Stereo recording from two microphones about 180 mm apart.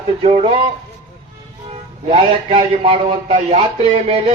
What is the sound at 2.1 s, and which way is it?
A man's voice, 30° right (ahead or behind).